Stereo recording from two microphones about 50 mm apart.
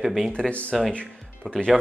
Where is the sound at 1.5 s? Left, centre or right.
Centre.